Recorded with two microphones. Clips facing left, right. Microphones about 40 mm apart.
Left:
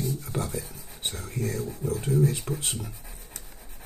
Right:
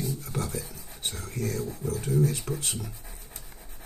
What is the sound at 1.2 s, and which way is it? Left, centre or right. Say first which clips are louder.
Speech: even; centre.